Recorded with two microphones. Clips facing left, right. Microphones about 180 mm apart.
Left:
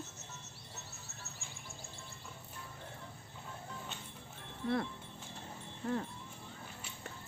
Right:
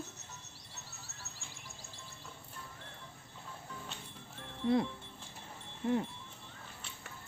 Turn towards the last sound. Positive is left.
turn(degrees=-20)  # may be behind; listen again after turning